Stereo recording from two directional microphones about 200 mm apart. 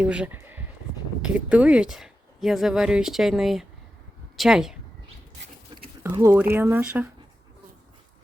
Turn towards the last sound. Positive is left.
turn(degrees=-10)  # may be behind; listen again after turning